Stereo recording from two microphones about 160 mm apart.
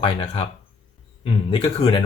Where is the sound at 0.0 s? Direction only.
30° left (ahead or behind).